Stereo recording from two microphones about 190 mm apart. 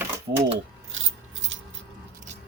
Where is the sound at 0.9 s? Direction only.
85° right.